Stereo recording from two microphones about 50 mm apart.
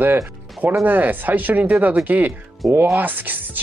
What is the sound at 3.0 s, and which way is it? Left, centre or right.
Speech, right.